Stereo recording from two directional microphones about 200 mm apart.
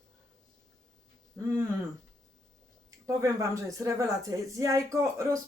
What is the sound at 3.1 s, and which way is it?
Speech, 15° right (ahead or behind).